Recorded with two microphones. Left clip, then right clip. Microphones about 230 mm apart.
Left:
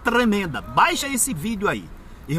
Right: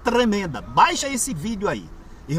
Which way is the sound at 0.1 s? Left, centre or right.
Centre.